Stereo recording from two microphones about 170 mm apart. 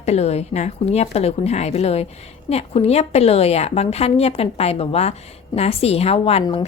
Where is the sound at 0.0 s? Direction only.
40° left (ahead or behind).